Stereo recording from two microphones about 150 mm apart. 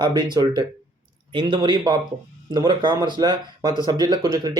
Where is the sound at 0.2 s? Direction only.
30° right (ahead or behind).